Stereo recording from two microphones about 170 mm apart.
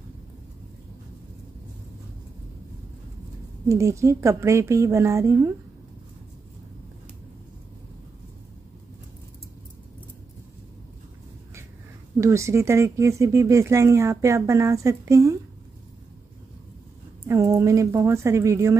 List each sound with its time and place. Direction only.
3.6 s speech: 15° right (ahead or behind)
12.2 s speech: 15° right (ahead or behind)
17.3 s speech: 20° right (ahead or behind)